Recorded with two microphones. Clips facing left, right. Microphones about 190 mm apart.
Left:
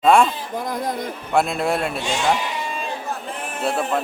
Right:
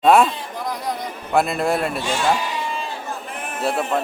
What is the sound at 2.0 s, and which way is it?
Speech, 15° left (ahead or behind).